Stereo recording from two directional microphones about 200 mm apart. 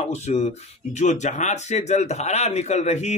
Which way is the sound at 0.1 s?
35° left (ahead or behind).